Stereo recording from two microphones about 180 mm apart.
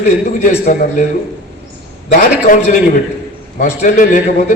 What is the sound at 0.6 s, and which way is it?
Speech, 45° left (ahead or behind).